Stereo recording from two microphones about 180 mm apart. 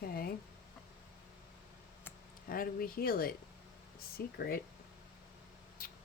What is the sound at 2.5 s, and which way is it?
Speech, 55° left (ahead or behind).